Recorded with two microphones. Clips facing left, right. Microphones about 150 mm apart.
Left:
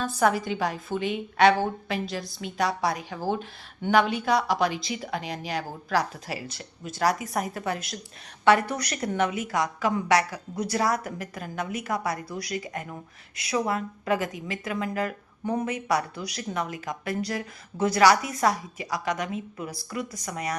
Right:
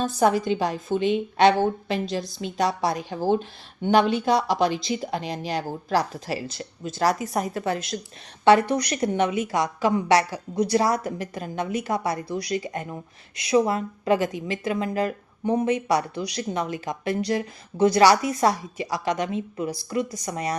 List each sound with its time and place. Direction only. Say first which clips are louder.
0.0 s a woman's voice: right 3 dB; 25° right (ahead or behind)